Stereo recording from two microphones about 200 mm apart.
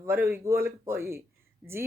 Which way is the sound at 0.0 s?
10° right (ahead or behind).